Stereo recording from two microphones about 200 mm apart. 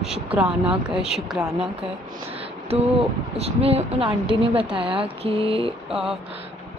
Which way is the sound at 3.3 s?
30° right (ahead or behind).